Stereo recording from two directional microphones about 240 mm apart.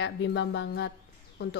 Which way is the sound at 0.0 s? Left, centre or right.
Left.